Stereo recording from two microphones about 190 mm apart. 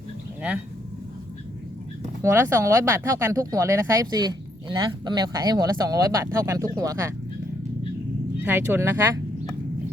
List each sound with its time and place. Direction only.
2.2 s speech: 15° right (ahead or behind)
8.4 s speech: 10° right (ahead or behind)